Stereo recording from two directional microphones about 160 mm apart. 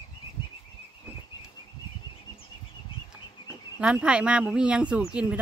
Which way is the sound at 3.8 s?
5° right (ahead or behind).